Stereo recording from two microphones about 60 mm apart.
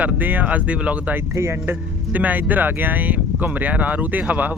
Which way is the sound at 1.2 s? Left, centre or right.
Right.